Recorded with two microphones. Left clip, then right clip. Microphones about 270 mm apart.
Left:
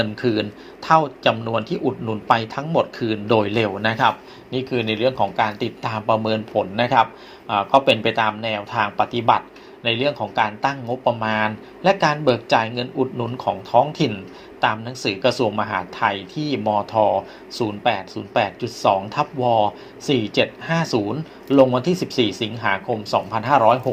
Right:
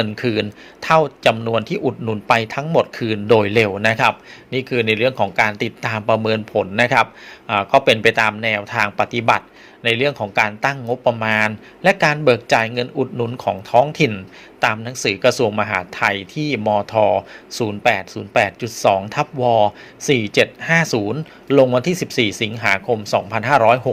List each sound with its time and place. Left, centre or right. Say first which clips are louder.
0.0 s speech: right 1 dB; right